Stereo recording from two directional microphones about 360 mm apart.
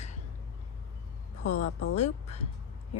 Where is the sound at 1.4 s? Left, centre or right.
Centre.